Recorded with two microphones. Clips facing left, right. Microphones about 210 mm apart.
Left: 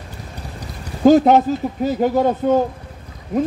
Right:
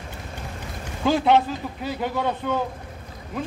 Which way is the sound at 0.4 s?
40° left (ahead or behind).